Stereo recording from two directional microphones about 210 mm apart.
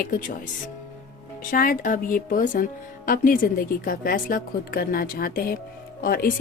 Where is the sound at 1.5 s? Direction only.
40° left (ahead or behind).